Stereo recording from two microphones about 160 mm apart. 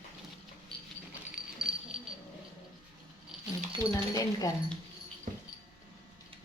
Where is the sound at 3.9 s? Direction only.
20° left (ahead or behind).